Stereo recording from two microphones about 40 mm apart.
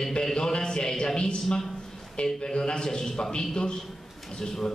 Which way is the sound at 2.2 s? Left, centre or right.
Centre.